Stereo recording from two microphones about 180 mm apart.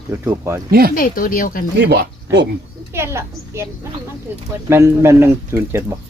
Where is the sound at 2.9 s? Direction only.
15° right (ahead or behind).